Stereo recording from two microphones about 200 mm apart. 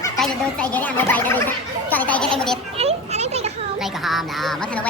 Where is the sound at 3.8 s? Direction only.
Centre (ahead or behind).